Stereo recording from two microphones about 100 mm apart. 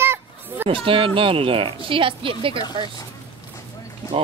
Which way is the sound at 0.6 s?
60° right (ahead or behind).